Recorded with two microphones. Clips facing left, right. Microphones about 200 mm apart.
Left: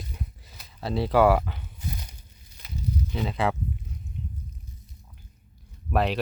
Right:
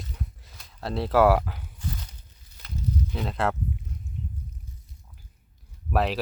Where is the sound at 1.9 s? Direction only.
15° left (ahead or behind).